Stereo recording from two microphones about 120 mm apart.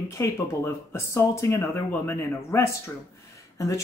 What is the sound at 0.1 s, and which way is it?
Speech, 25° left (ahead or behind).